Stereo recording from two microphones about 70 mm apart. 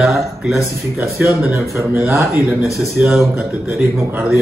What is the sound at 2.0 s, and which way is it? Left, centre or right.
Speech, right.